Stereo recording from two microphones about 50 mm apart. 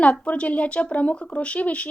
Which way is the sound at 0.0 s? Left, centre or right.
Left.